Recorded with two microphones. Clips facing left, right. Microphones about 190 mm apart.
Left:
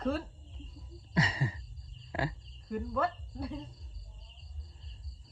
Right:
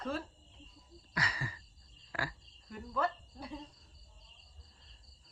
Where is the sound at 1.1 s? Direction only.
25° left (ahead or behind).